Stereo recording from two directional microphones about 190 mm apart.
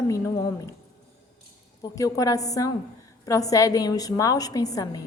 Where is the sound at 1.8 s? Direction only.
20° left (ahead or behind).